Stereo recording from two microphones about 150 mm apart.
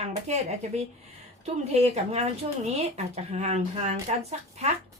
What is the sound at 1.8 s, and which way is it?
A woman's voice, 45° right (ahead or behind).